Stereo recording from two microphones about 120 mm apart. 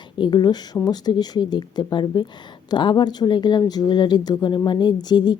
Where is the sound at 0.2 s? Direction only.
40° left (ahead or behind).